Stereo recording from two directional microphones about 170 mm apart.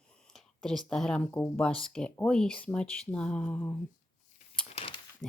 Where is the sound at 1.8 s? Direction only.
5° left (ahead or behind).